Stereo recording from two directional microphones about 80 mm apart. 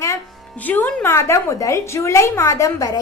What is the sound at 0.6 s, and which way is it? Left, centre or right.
Speech, left.